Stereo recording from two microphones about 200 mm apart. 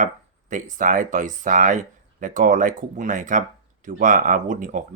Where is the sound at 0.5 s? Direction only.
40° right (ahead or behind).